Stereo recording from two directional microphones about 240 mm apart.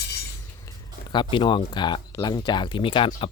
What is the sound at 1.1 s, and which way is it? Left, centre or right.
Speech, centre.